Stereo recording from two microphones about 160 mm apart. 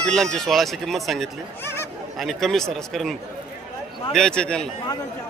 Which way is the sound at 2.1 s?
Centre (ahead or behind).